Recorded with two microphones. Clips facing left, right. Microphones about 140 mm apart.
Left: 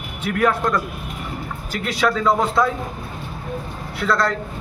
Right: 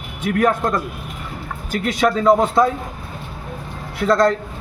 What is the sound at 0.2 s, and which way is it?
Speech, 40° right (ahead or behind).